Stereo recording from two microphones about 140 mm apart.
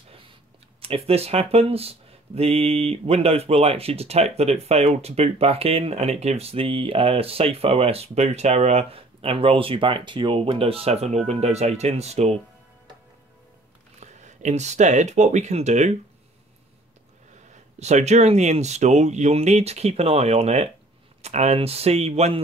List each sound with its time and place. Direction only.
0.7 s speech: 45° right (ahead or behind)
13.9 s speech: 55° right (ahead or behind)
17.7 s speech: 55° right (ahead or behind)